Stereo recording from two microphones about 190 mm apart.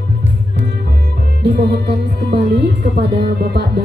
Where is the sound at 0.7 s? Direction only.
55° right (ahead or behind).